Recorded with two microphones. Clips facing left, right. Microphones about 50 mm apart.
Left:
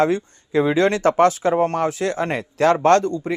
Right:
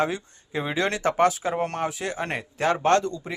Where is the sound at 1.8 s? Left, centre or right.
Left.